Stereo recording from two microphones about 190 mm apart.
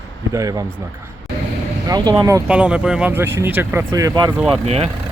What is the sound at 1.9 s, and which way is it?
Speech, 20° right (ahead or behind).